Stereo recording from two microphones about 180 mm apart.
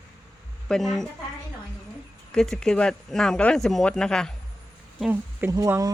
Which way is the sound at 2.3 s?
5° left (ahead or behind).